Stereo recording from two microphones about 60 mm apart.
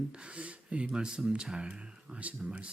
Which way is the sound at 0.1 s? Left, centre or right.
Centre.